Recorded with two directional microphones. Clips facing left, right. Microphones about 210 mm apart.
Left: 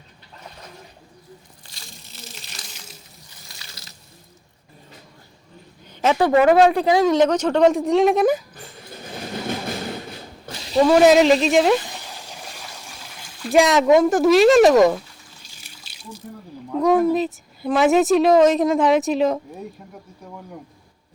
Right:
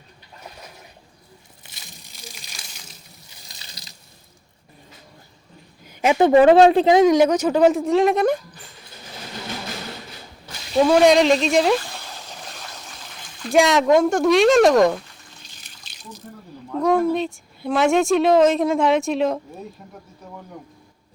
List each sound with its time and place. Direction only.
1.8 s a sound: 15° right (ahead or behind)
3.6 s water: 15° right (ahead or behind)
5.8 s speech: 10° right (ahead or behind)
10.8 s a woman's voice: centre (ahead or behind)
11.9 s a sound: 15° left (ahead or behind)
16.7 s a woman's voice: centre (ahead or behind)